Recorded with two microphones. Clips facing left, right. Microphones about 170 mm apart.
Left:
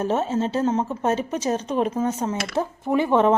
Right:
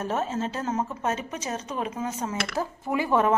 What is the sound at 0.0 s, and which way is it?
A woman's voice, 30° left (ahead or behind).